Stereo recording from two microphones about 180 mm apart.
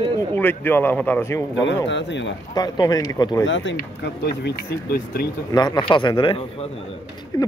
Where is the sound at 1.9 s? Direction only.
80° left.